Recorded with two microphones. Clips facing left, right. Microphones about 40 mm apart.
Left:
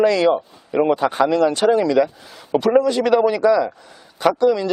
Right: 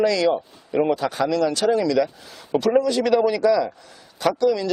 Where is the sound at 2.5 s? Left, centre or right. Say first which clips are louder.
Left 3 dB; centre.